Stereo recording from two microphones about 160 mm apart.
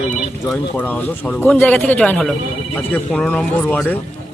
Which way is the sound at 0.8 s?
10° left (ahead or behind).